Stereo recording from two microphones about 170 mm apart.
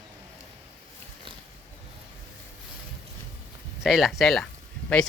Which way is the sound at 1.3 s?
30° right (ahead or behind).